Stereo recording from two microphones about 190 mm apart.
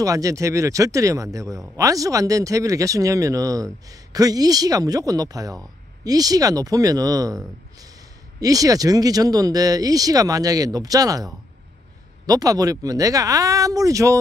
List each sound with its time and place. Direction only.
0.0 s speech: 15° right (ahead or behind)